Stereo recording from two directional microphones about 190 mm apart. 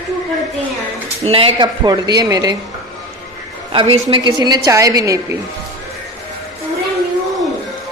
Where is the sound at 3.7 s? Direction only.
25° right (ahead or behind).